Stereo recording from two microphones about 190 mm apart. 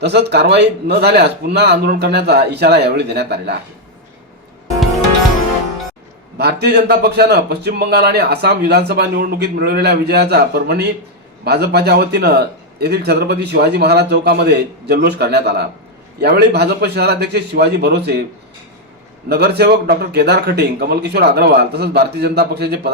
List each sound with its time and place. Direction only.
0.0 s a man's voice: 60° right (ahead or behind)
6.3 s a man's voice: 60° right (ahead or behind)
19.3 s a man's voice: 55° right (ahead or behind)